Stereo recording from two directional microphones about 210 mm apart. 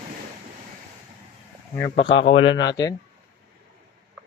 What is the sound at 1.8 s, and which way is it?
Speech, 25° left (ahead or behind).